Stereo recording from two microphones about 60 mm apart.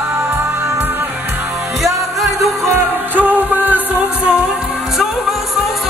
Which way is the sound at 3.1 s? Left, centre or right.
Right.